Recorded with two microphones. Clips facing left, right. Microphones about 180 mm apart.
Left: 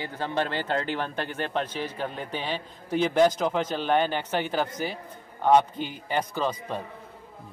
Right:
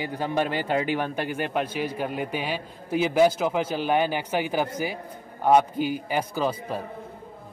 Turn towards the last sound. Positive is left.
turn(degrees=-10)  # may be behind; listen again after turning